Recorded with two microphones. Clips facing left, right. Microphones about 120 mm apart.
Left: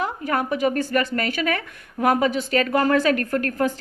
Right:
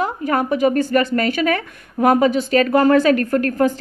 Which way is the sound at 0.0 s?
30° right (ahead or behind).